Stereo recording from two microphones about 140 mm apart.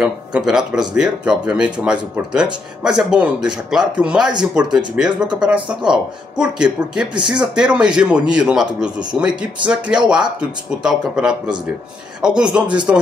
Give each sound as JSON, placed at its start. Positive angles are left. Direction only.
{"t": 0.0, "sound": "a man's voice", "side_deg": -5}